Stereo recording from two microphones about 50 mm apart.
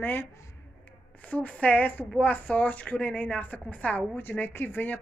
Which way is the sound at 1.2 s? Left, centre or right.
Left.